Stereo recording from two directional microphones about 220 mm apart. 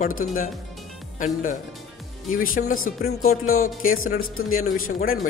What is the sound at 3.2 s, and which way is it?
A man's voice, 70° left (ahead or behind).